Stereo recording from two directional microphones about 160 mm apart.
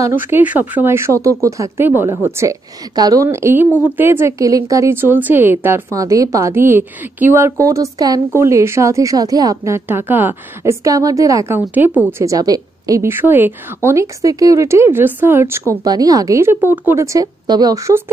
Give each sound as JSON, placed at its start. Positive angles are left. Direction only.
{"t": 0.0, "sound": "speech", "side_deg": -15}